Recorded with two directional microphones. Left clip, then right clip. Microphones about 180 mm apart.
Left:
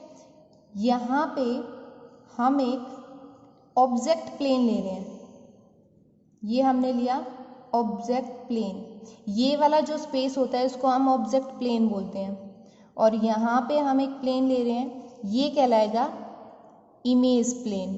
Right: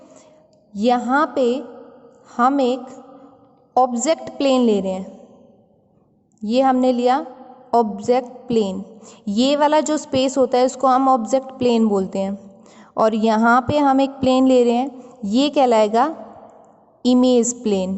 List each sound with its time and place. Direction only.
0.7 s a woman's voice: 55° right (ahead or behind)
3.8 s a woman's voice: 60° right (ahead or behind)
6.4 s a woman's voice: 55° right (ahead or behind); by 17.9 s 40° right (ahead or behind)